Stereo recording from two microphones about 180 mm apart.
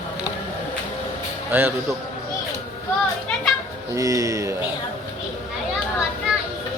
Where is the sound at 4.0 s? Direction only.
20° right (ahead or behind).